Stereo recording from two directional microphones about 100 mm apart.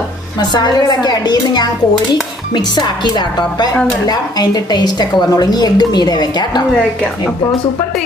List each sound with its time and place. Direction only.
0.4 s a woman's voice: 45° left (ahead or behind)